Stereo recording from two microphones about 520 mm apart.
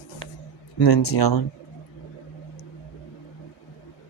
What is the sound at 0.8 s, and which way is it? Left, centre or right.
Speech, left.